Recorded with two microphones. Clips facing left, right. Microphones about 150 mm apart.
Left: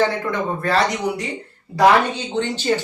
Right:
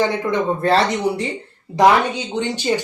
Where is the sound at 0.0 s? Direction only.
25° right (ahead or behind).